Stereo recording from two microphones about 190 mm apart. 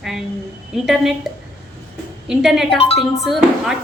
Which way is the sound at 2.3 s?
Centre (ahead or behind).